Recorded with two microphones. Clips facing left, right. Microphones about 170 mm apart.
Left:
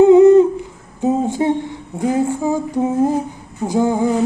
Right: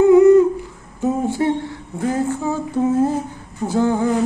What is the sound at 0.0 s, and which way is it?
Humming, 20° left (ahead or behind).